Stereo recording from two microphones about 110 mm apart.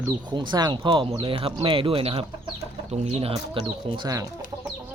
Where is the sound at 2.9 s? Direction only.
70° right (ahead or behind).